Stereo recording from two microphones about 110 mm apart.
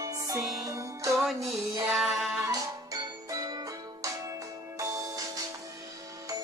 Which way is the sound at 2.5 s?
30° right (ahead or behind).